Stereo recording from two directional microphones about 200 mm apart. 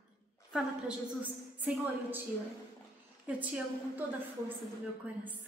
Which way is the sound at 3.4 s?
5° right (ahead or behind).